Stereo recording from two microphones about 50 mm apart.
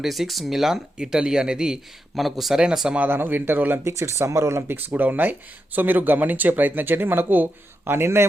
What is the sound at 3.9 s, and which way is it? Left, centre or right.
Speech, right.